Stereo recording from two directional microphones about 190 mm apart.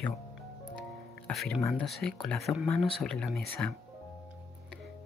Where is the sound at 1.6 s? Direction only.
15° left (ahead or behind).